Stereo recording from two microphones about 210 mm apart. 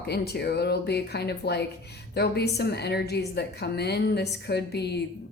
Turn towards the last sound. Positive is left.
turn(degrees=50)  # may be behind; listen again after turning